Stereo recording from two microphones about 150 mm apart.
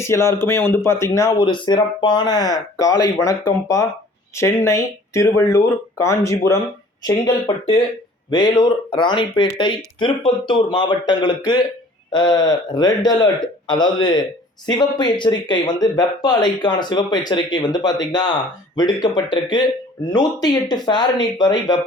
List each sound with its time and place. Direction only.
0.0 s speech: 20° left (ahead or behind)
8.3 s speech: 30° left (ahead or behind)